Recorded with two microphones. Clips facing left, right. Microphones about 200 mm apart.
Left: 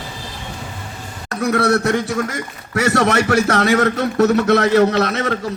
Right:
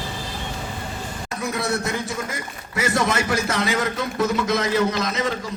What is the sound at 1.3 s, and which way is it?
A man's voice, 70° left (ahead or behind).